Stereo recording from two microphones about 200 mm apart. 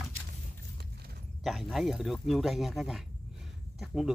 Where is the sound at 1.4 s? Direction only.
Centre (ahead or behind).